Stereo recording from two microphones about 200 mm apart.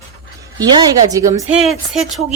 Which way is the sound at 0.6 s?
20° right (ahead or behind).